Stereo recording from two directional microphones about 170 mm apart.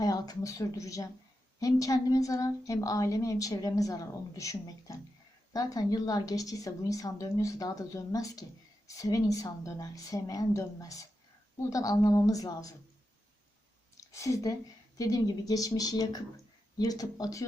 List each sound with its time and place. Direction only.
0.0 s speech: 20° left (ahead or behind)
13.9 s a sound: 20° left (ahead or behind)
14.9 s speech: 20° left (ahead or behind)